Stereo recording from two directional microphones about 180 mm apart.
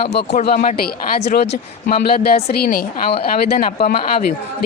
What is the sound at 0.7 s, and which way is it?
Speech, 60° left (ahead or behind).